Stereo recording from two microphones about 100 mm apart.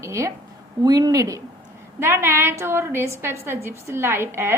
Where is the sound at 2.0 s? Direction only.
25° right (ahead or behind).